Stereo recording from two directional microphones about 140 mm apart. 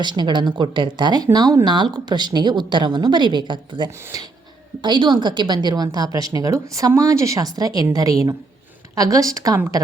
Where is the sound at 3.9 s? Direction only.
20° right (ahead or behind).